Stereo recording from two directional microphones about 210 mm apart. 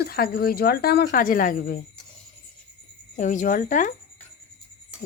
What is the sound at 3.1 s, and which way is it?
Speech, 35° left (ahead or behind).